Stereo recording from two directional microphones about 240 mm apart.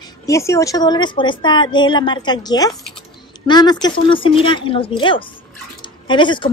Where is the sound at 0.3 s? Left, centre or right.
Centre.